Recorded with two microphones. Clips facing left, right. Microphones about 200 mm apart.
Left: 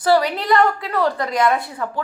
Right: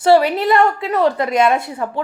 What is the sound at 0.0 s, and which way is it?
A woman's voice, 25° right (ahead or behind).